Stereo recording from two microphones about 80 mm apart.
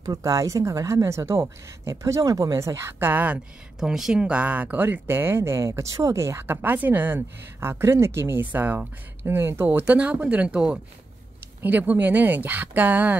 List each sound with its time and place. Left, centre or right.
0.0 s speech: right
3.8 s speech: centre
11.6 s speech: right